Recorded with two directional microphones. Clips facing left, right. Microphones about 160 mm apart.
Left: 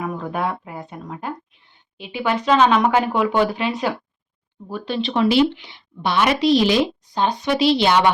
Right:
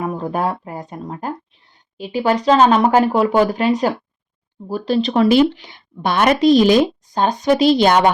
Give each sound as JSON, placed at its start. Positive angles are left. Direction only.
{"t": 0.0, "sound": "a woman's voice", "side_deg": -35}